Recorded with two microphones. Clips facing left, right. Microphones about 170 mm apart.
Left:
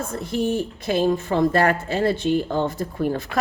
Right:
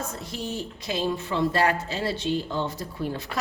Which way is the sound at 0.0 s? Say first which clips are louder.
Left 9 dB; 55° left (ahead or behind).